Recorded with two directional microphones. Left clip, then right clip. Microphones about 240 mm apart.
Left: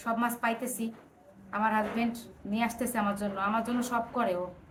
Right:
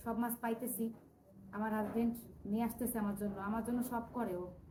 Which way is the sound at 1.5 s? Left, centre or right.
Centre.